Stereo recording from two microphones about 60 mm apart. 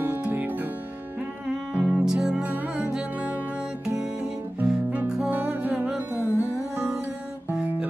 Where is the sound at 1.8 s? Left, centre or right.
Centre.